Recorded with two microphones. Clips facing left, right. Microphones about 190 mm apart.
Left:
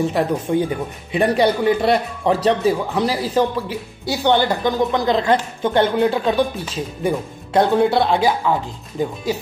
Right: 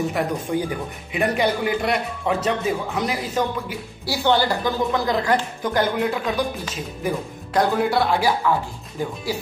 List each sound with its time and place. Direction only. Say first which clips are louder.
0.1 s speech: left 4 dB; 25° left (ahead or behind)
4.0 s a woman's voice: left 3 dB; 20° left (ahead or behind)